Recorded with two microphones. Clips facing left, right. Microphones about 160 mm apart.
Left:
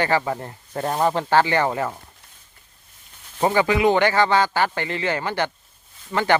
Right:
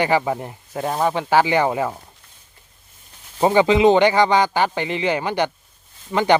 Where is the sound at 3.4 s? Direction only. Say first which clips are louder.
Right 4 dB; 20° right (ahead or behind).